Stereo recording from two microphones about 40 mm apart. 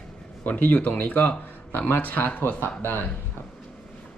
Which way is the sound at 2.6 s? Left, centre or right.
Left.